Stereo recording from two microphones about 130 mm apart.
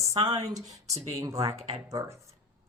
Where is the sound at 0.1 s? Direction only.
55° right (ahead or behind).